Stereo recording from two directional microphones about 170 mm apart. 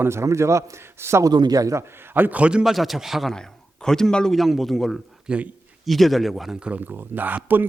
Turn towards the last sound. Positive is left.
turn(degrees=-10)  # may be behind; listen again after turning